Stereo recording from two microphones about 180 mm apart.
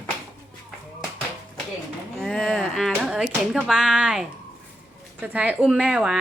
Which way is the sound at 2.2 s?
5° left (ahead or behind).